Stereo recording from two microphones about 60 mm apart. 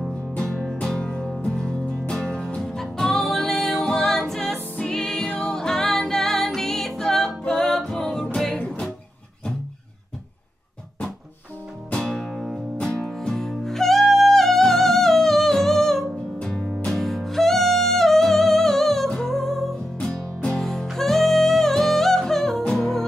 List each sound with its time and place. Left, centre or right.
0.4 s music: centre
12.0 s music: centre